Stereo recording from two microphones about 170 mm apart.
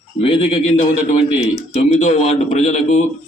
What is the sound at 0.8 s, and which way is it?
A man's voice, 45° left (ahead or behind).